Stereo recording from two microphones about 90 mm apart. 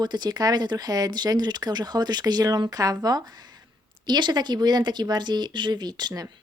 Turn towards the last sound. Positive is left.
turn(degrees=-45)  # may be behind; listen again after turning